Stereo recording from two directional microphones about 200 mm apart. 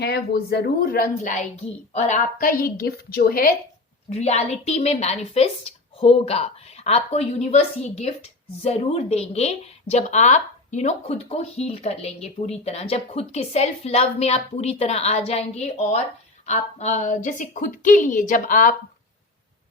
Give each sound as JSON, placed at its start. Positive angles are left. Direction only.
{"t": 0.0, "sound": "a woman's voice", "side_deg": 55}
{"t": 4.1, "sound": "speech", "side_deg": 35}